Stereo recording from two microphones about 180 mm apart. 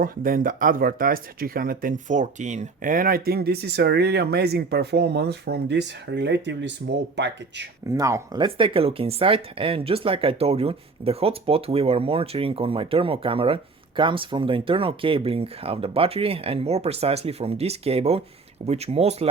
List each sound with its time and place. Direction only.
0.0 s speech: 50° right (ahead or behind); by 7.7 s 80° right
7.9 s speech: 15° right (ahead or behind); by 19.3 s 35° right (ahead or behind)